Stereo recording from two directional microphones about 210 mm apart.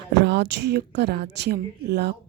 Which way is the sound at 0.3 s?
55° right (ahead or behind).